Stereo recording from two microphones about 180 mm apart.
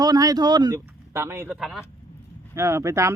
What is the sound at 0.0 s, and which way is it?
Speech, 20° right (ahead or behind).